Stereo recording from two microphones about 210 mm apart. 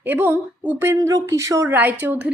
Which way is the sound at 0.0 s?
10° right (ahead or behind).